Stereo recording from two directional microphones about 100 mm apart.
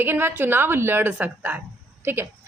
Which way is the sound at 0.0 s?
25° right (ahead or behind).